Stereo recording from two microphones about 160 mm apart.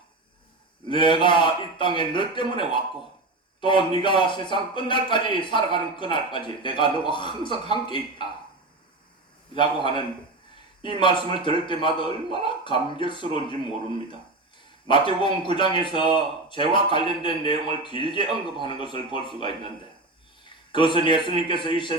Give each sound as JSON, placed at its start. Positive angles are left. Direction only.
{"t": 0.9, "sound": "a man's voice", "side_deg": 30}
{"t": 9.6, "sound": "a man's voice", "side_deg": 30}
{"t": 11.0, "sound": "a man's voice", "side_deg": 30}
{"t": 14.8, "sound": "a man's voice", "side_deg": 30}
{"t": 20.7, "sound": "a man's voice", "side_deg": 30}